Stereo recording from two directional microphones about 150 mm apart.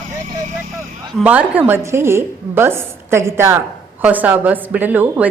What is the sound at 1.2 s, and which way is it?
A woman's voice, 10° right (ahead or behind).